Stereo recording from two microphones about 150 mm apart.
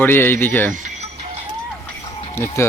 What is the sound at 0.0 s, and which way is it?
Speech, 15° left (ahead or behind).